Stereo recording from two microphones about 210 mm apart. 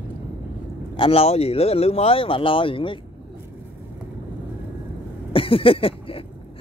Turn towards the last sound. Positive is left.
turn(degrees=25)  # may be behind; listen again after turning